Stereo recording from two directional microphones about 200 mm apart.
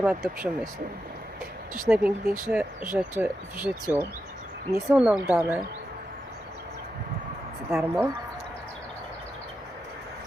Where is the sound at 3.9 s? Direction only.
10° right (ahead or behind).